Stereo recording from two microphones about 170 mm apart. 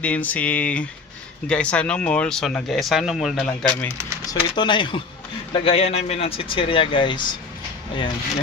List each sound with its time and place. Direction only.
0.0 s speech: 10° left (ahead or behind)
4.3 s speech: 25° left (ahead or behind)